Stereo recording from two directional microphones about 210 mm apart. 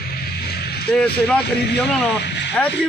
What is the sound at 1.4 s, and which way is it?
Speech, 50° left (ahead or behind).